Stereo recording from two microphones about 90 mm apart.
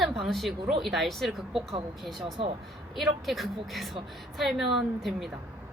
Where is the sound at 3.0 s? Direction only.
Centre (ahead or behind).